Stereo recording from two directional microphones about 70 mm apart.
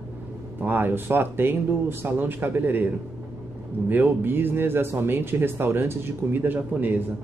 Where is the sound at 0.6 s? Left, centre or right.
Right.